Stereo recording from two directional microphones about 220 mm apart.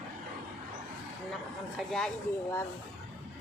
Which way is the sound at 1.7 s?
Centre (ahead or behind).